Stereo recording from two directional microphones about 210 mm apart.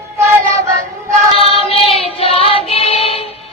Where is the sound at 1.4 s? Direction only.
25° left (ahead or behind).